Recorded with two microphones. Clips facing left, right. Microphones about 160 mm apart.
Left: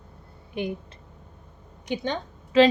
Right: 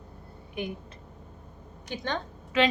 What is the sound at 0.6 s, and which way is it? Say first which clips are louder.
Speech: left 4 dB; 30° left (ahead or behind).